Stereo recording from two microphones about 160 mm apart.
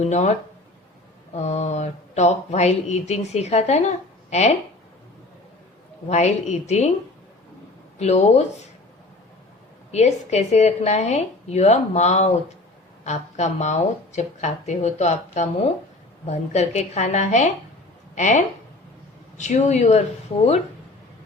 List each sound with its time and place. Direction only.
0.0 s speech: 45° left (ahead or behind)
1.4 s speech: 45° left (ahead or behind)
6.1 s speech: 45° left (ahead or behind)
7.9 s speech: 45° left (ahead or behind)
9.9 s a woman's voice: 45° left (ahead or behind)